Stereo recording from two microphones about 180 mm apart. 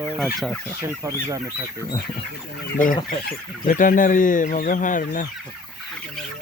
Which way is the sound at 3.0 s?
50° left (ahead or behind).